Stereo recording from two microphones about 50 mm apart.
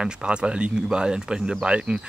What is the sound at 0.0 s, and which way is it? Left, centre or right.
Speech, centre.